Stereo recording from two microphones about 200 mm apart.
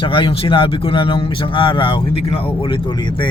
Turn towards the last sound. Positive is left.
turn(degrees=25)  # may be behind; listen again after turning